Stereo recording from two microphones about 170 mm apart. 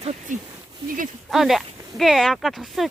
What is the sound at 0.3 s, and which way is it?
Speech, 50° right (ahead or behind).